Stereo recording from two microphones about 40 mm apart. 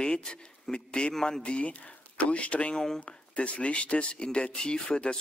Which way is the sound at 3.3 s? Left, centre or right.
Left.